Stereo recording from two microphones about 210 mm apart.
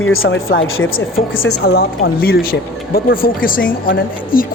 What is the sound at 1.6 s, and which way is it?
Speech, 50° left (ahead or behind).